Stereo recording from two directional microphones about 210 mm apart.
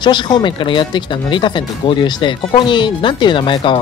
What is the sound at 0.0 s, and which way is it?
Speech, 20° left (ahead or behind).